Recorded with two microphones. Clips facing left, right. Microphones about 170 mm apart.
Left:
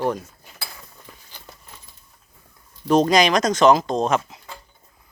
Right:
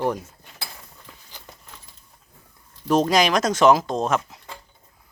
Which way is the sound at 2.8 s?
5° right (ahead or behind).